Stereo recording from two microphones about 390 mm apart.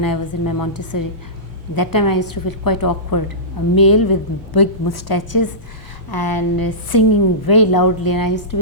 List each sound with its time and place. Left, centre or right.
0.0 s a woman's voice: left